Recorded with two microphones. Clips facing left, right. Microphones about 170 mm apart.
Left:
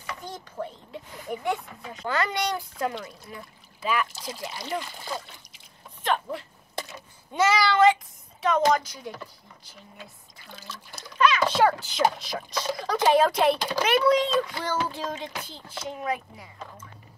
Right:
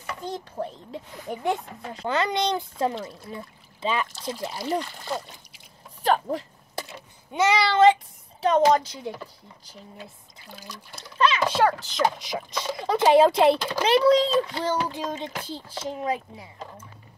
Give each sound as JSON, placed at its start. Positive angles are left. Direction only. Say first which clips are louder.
{"t": 0.2, "sound": "a child's voice", "louder": "right 6 dB", "side_deg": -35}
{"t": 2.0, "sound": "a child's voice", "louder": "right 3 dB", "side_deg": -20}
{"t": 4.8, "sound": "speech", "louder": "right 1 dB", "side_deg": 5}
{"t": 6.0, "sound": "a sound", "louder": "right 4 dB", "side_deg": -40}
{"t": 7.3, "sound": "speech", "louder": "right 1 dB", "side_deg": -20}
{"t": 10.5, "sound": "child singing", "louder": "right 1 dB", "side_deg": -15}
{"t": 11.0, "sound": "a sound", "louder": "even", "side_deg": -25}
{"t": 11.6, "sound": "speech", "louder": "even", "side_deg": 5}
{"t": 12.2, "sound": "child singing", "louder": "right 2 dB", "side_deg": -15}
{"t": 12.7, "sound": "a child's voice", "louder": "right 4 dB", "side_deg": -25}
{"t": 14.9, "sound": "child singing", "louder": "right 2 dB", "side_deg": -20}
{"t": 15.4, "sound": "a child's voice", "louder": "right 4 dB", "side_deg": -35}